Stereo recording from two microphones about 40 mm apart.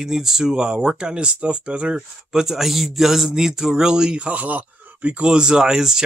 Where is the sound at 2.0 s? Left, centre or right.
Centre.